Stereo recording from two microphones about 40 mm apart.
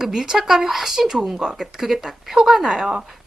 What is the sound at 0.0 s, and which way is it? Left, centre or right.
Speech, centre.